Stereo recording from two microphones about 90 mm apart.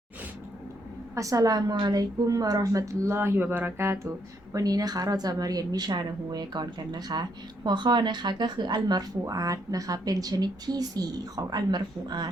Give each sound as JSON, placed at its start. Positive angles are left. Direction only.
{"t": 1.1, "sound": "a woman's voice", "side_deg": -40}
{"t": 4.5, "sound": "a woman's voice", "side_deg": -45}
{"t": 9.2, "sound": "a woman's voice", "side_deg": -40}